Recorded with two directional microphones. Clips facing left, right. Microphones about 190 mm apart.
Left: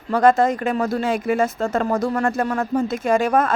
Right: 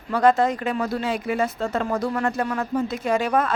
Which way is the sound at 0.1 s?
45° left (ahead or behind).